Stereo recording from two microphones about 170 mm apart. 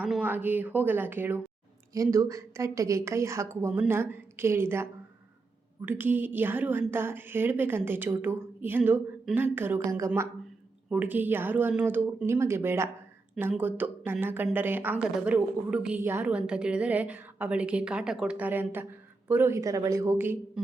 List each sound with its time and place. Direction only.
0.0 s a woman's voice: 10° right (ahead or behind)